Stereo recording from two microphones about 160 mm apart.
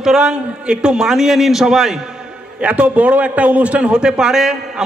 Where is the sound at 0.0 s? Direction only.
5° right (ahead or behind).